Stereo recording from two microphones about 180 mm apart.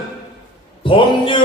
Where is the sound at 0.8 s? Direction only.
30° left (ahead or behind).